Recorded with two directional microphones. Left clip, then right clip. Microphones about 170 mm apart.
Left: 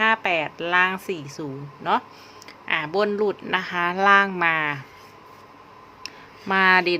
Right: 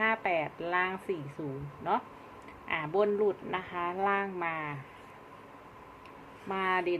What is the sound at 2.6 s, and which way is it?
Speech, 45° left (ahead or behind).